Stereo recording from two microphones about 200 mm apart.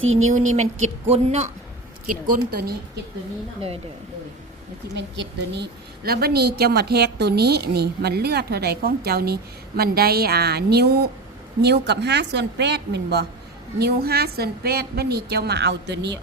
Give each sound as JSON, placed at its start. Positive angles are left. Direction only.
{"t": 0.0, "sound": "speech", "side_deg": -85}
{"t": 0.5, "sound": "speech", "side_deg": -35}
{"t": 2.0, "sound": "a woman's voice", "side_deg": -45}
{"t": 4.9, "sound": "a woman's voice", "side_deg": -60}